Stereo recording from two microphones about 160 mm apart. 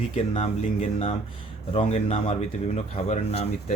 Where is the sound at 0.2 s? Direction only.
40° left (ahead or behind).